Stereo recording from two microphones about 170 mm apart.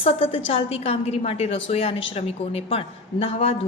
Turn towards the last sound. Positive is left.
turn(degrees=35)  # may be behind; listen again after turning